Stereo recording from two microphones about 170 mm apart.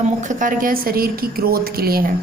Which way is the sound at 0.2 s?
50° right (ahead or behind).